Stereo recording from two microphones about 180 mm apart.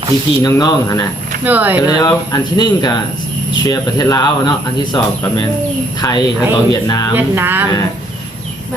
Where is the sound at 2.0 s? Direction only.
25° left (ahead or behind).